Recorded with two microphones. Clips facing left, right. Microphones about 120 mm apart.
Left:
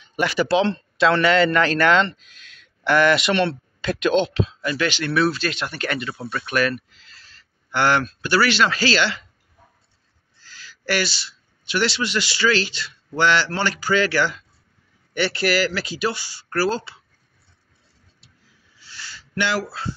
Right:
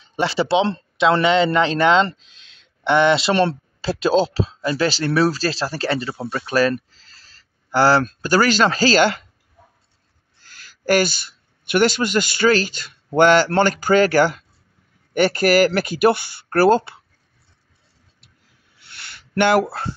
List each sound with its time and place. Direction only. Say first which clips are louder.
0.0 s a man's voice: right 1 dB; 30° right (ahead or behind); by 9.2 s 45° right (ahead or behind)
10.4 s speech: right 6 dB; 50° right (ahead or behind)
18.8 s a sound: left 2 dB; 60° right (ahead or behind)